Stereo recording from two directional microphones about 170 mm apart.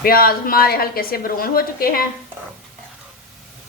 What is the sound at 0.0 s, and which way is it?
A woman's voice, 60° left (ahead or behind).